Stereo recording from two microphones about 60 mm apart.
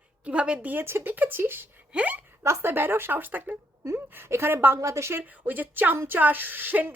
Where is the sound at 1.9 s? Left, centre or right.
Right.